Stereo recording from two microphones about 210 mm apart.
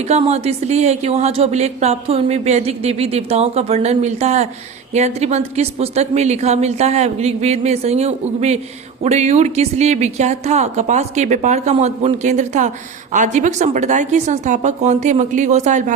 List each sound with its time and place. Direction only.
0.1 s speech: 30° right (ahead or behind)